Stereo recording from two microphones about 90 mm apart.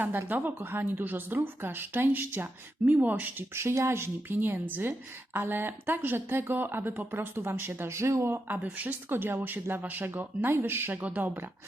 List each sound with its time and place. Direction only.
0.0 s speech: 20° right (ahead or behind)
8.5 s speech: 15° right (ahead or behind)